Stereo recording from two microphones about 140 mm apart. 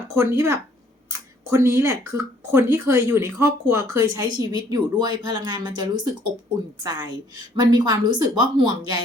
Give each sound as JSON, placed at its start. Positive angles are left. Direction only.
{"t": 0.1, "sound": "speech", "side_deg": -20}
{"t": 7.5, "sound": "speech", "side_deg": -30}